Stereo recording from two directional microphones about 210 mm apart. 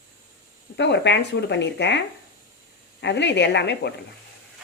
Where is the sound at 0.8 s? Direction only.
55° left (ahead or behind).